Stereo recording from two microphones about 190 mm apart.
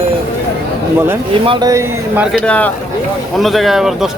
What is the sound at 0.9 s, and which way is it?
A man's voice, 10° right (ahead or behind).